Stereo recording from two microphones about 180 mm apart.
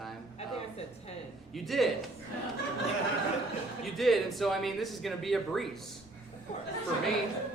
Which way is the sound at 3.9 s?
Centre (ahead or behind).